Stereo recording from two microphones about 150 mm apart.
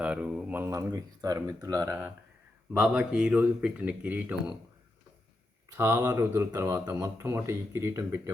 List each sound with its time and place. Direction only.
0.0 s speech: 10° right (ahead or behind)
2.7 s speech: 10° right (ahead or behind)
5.7 s speech: 15° right (ahead or behind)